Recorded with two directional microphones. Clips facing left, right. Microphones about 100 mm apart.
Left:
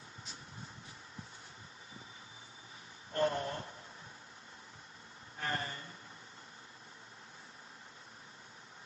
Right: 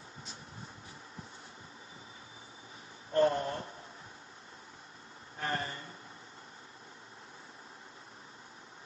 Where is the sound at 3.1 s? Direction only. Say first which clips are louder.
Right 5 dB; 30° right (ahead or behind).